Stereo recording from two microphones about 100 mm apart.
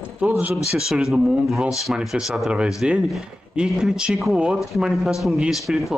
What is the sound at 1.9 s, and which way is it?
A man's voice, 5° right (ahead or behind).